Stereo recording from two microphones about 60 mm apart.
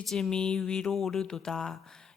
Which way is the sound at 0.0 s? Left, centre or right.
Centre.